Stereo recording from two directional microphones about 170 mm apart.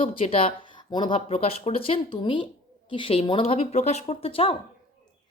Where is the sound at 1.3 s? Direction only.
40° left (ahead or behind).